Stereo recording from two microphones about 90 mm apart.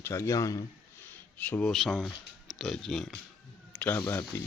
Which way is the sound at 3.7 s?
20° left (ahead or behind).